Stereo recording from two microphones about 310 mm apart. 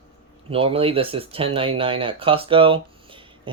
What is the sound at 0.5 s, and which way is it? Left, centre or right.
Speech, centre.